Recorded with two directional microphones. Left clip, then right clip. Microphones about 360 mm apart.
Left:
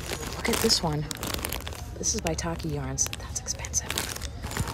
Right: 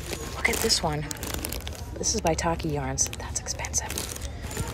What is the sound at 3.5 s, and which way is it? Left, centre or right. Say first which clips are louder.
Whispering: even; centre.